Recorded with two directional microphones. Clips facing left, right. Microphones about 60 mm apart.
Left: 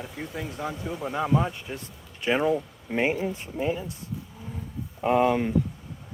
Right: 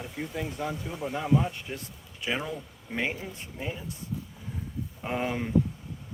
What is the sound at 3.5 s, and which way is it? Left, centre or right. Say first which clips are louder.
Speech: left 8 dB; left.